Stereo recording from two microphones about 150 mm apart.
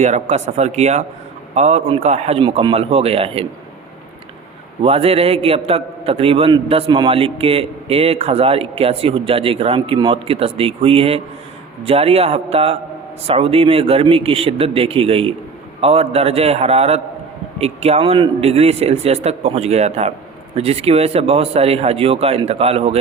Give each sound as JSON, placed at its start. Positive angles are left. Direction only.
{"t": 0.0, "sound": "a man's voice", "side_deg": -50}
{"t": 4.8, "sound": "a man's voice", "side_deg": -40}